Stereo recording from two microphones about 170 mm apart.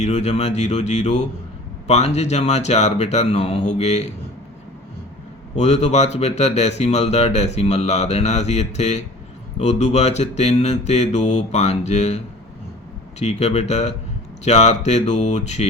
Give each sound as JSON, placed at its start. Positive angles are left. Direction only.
{"t": 0.0, "sound": "speech", "side_deg": 40}
{"t": 5.5, "sound": "speech", "side_deg": 40}